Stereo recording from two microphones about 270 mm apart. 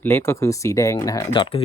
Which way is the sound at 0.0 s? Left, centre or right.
Centre.